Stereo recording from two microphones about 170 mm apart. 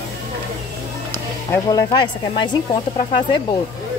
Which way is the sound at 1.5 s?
20° left (ahead or behind).